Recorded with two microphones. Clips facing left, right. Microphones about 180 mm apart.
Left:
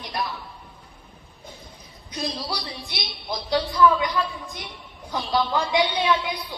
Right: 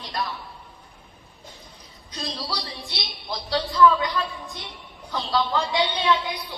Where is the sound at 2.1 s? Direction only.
20° left (ahead or behind).